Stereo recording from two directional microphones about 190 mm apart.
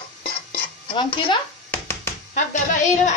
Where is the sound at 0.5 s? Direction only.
30° left (ahead or behind).